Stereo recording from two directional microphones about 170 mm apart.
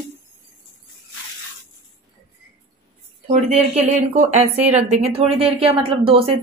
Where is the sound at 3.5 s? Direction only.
40° right (ahead or behind).